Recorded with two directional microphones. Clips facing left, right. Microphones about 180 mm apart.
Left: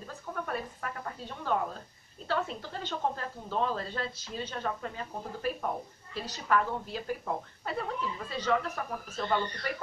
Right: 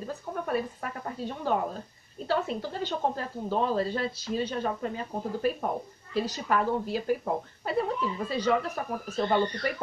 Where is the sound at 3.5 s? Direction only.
10° right (ahead or behind).